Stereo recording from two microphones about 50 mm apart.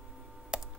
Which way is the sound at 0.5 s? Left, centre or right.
Centre.